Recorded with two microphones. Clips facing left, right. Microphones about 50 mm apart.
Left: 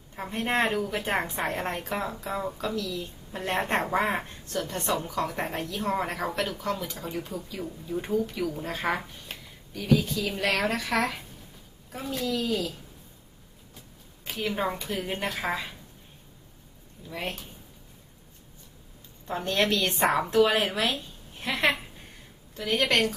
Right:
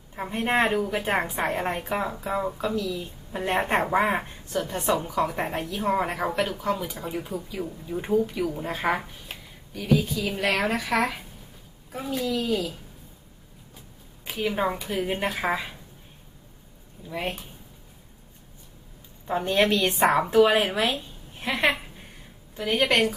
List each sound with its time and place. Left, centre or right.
0.2 s a woman's voice: centre
14.3 s a woman's voice: centre
17.1 s a woman's voice: centre
19.3 s a woman's voice: centre